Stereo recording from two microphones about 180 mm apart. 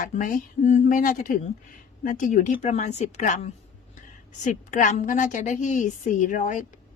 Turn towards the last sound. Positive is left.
turn(degrees=45)  # may be behind; listen again after turning